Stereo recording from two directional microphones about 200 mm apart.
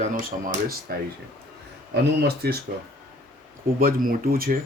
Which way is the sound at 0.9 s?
50° right (ahead or behind).